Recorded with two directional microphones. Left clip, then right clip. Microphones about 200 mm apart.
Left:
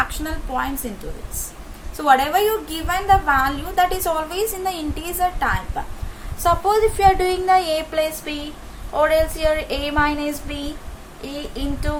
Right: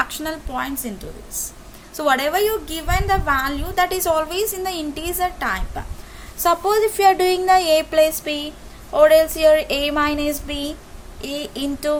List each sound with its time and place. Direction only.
0.0 s a woman's voice: 55° right (ahead or behind)
2.0 s a woman's voice: 55° right (ahead or behind)